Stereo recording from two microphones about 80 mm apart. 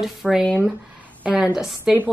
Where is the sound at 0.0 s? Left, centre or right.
Centre.